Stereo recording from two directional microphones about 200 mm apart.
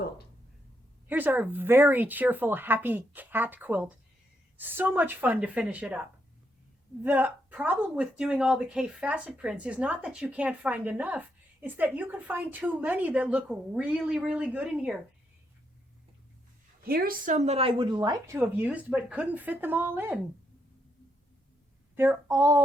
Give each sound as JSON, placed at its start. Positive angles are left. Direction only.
{"t": 1.0, "sound": "speech", "side_deg": -10}
{"t": 7.0, "sound": "speech", "side_deg": -10}
{"t": 16.8, "sound": "speech", "side_deg": -50}
{"t": 21.9, "sound": "speech", "side_deg": -10}